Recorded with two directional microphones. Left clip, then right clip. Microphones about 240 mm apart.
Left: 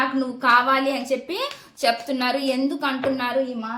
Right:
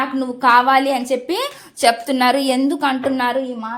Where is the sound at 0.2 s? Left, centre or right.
Right.